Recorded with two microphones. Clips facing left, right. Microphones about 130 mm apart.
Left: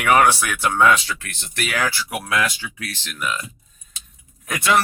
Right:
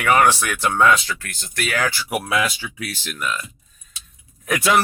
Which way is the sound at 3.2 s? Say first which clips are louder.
Even; 15° left (ahead or behind).